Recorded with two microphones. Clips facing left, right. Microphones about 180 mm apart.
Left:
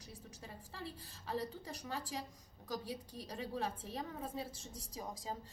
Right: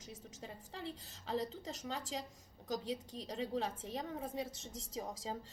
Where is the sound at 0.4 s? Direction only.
20° right (ahead or behind).